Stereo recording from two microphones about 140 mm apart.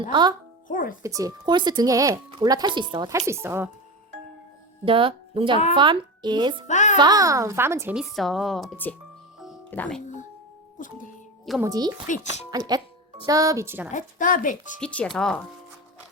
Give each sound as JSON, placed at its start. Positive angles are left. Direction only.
{"t": 0.1, "sound": "speech", "side_deg": -30}
{"t": 0.7, "sound": "speech", "side_deg": 75}
{"t": 1.0, "sound": "speech", "side_deg": -25}
{"t": 3.1, "sound": "speech", "side_deg": -20}
{"t": 4.9, "sound": "speech", "side_deg": -40}
{"t": 6.7, "sound": "a child's voice", "side_deg": 60}
{"t": 6.9, "sound": "speech", "side_deg": -30}
{"t": 7.9, "sound": "speech", "side_deg": 0}
{"t": 9.6, "sound": "speech", "side_deg": 10}
{"t": 11.6, "sound": "speech", "side_deg": -25}
{"t": 12.0, "sound": "speech", "side_deg": 60}
{"t": 12.5, "sound": "speech", "side_deg": -30}
{"t": 13.9, "sound": "speech", "side_deg": 70}
{"t": 14.8, "sound": "speech", "side_deg": 5}